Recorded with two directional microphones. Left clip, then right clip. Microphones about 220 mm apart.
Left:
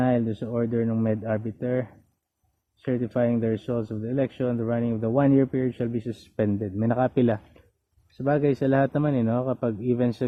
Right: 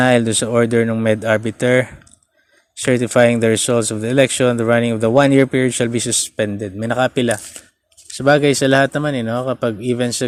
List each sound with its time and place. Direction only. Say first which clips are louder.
0.0 s speech: right 11 dB; 30° right (ahead or behind)
6.3 s speech: right 6 dB; 10° right (ahead or behind)
8.2 s speech: right 10 dB; 20° right (ahead or behind)